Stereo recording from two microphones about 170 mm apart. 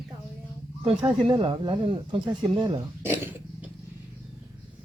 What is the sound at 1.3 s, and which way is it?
Speech, 30° right (ahead or behind).